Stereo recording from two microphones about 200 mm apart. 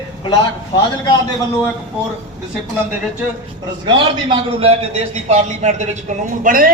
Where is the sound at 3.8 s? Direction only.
25° right (ahead or behind).